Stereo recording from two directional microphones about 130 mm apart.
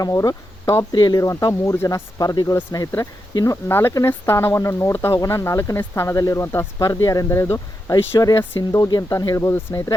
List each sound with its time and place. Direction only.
0.0 s speech: 25° left (ahead or behind)